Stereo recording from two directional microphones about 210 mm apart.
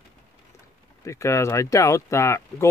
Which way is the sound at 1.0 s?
15° left (ahead or behind).